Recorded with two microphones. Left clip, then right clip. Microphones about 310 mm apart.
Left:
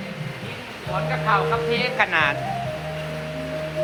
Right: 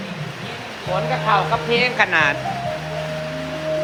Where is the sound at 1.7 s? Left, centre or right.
Centre.